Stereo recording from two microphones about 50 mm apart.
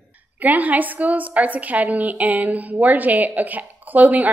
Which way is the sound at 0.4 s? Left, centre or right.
Right.